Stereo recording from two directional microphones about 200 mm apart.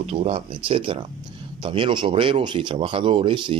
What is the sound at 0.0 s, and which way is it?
Speech, 30° right (ahead or behind).